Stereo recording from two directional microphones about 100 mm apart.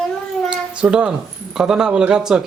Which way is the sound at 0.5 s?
10° right (ahead or behind).